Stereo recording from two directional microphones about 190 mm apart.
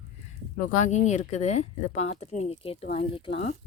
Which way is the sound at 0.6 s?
40° left (ahead or behind).